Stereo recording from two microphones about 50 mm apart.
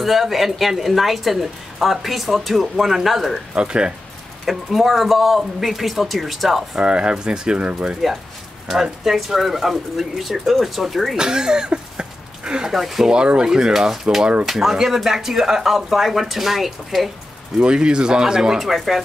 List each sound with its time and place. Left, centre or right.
0.0 s a woman's voice: centre
3.5 s speech: centre
4.5 s a woman's voice: centre
6.8 s speech: right
8.8 s a woman's voice: centre
11.1 s speech: centre
12.7 s a woman's voice: centre
13.1 s a woman's voice: centre
17.6 s speech: centre
18.6 s a woman's voice: centre